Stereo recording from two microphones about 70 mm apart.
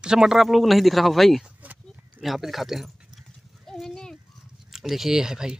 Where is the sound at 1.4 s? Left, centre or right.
Right.